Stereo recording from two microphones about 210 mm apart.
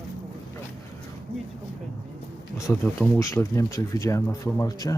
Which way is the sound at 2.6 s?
10° left (ahead or behind).